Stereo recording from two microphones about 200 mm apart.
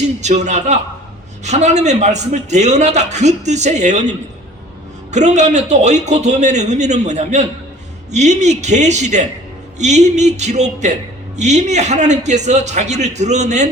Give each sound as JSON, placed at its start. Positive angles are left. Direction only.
{"t": 0.2, "sound": "a man's voice", "side_deg": -35}
{"t": 5.1, "sound": "a man's voice", "side_deg": -35}